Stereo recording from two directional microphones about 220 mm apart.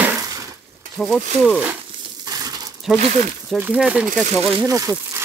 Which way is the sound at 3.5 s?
5° right (ahead or behind).